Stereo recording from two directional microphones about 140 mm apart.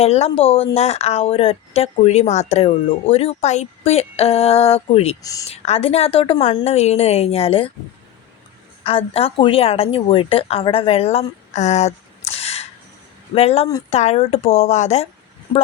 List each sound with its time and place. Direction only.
0.0 s speech: 45° left (ahead or behind)
5.2 s speech: 25° left (ahead or behind)
5.5 s speech: 45° left (ahead or behind)
8.8 s speech: 45° left (ahead or behind)